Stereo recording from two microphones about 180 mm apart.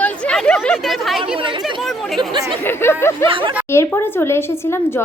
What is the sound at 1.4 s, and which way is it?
Chatter, 25° right (ahead or behind).